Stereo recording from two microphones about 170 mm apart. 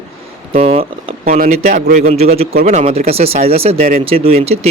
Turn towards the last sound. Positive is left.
turn(degrees=-35)  # may be behind; listen again after turning